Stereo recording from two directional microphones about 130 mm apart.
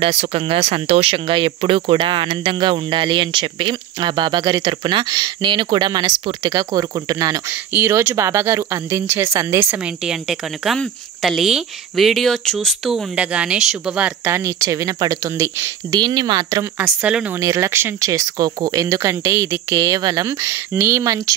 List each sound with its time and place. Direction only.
0.0 s speech: 45° right (ahead or behind); by 9.8 s 20° right (ahead or behind)
10.0 s a woman's voice: 5° right (ahead or behind); by 16.0 s 20° right (ahead or behind)
16.0 s speech: 35° right (ahead or behind)
16.7 s speech: 10° right (ahead or behind)
17.4 s speech: 25° right (ahead or behind)